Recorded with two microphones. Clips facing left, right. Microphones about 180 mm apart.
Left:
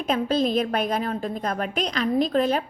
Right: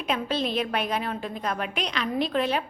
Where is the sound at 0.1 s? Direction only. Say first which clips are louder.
Left 5 dB; 40° left (ahead or behind).